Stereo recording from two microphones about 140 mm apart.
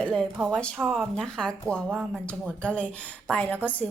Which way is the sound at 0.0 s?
5° left (ahead or behind).